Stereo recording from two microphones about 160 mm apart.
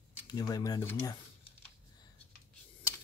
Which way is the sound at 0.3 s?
25° left (ahead or behind).